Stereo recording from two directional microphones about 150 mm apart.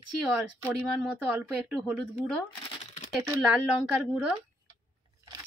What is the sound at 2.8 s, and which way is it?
Crumpling, 55° left (ahead or behind).